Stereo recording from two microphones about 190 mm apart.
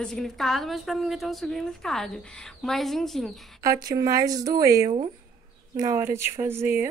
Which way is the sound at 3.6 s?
20° right (ahead or behind).